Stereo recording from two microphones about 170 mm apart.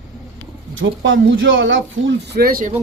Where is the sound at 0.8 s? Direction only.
90° right; by 2.7 s 60° right (ahead or behind).